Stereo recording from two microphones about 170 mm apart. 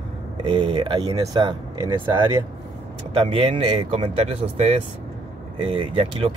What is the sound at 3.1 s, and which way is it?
Speech, 35° right (ahead or behind).